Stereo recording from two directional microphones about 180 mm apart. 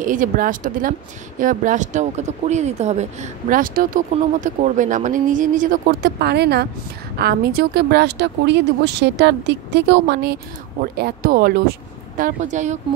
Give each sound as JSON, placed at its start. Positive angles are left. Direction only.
{"t": 0.0, "sound": "speech", "side_deg": -45}
{"t": 6.0, "sound": "speech", "side_deg": -65}
{"t": 12.2, "sound": "speech", "side_deg": -45}